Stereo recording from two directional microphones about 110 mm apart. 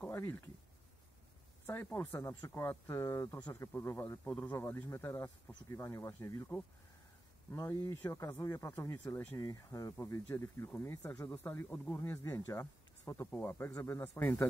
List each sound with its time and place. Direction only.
0.0 s a sound: 20° left (ahead or behind)
1.7 s speech: 20° left (ahead or behind)
4.2 s speech: 10° left (ahead or behind)
4.6 s speech: 25° left (ahead or behind)
7.7 s speech: 30° left (ahead or behind)
12.0 s speech: 25° left (ahead or behind)
13.3 s speech: 20° left (ahead or behind)